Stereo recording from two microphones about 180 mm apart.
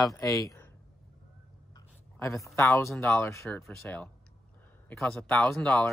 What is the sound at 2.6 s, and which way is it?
Speech, 15° left (ahead or behind).